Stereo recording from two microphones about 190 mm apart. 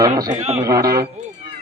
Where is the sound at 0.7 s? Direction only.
15° right (ahead or behind).